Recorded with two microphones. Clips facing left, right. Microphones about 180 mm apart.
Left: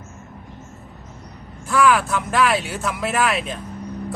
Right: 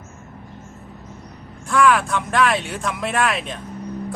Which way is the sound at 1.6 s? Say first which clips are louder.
Even; centre (ahead or behind).